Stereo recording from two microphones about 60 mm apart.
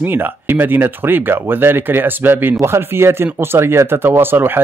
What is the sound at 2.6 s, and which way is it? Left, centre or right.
Speech, right.